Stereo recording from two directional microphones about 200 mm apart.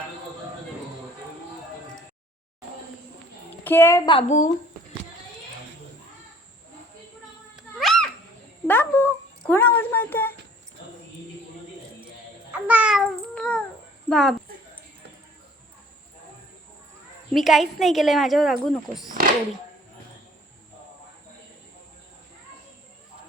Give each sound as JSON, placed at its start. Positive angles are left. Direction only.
{"t": 3.6, "sound": "a woman's voice", "side_deg": 10}
{"t": 4.3, "sound": "speech", "side_deg": 35}
{"t": 7.8, "sound": "a sound", "side_deg": 0}
{"t": 12.5, "sound": "babbling", "side_deg": -5}
{"t": 14.1, "sound": "speech", "side_deg": 0}
{"t": 17.3, "sound": "speech", "side_deg": 0}